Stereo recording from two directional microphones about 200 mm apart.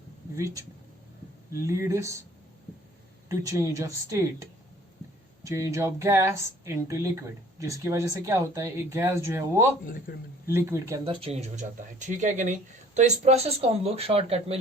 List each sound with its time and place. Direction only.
0.3 s speech: 15° right (ahead or behind)
1.6 s speech: 15° right (ahead or behind)
3.2 s speech: 15° right (ahead or behind)
10.1 s a man's voice: 45° left (ahead or behind)
10.4 s speech: 10° right (ahead or behind)
11.0 s speech: 25° right (ahead or behind)